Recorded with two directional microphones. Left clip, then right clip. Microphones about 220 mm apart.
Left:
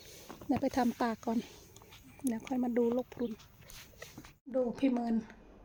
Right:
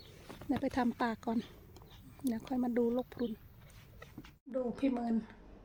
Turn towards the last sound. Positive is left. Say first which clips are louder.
# left 2 dB
turn(degrees=20)  # may be behind; listen again after turning